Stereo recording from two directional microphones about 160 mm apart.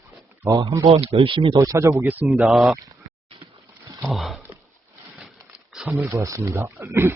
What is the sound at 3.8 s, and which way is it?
Sniff, 20° right (ahead or behind).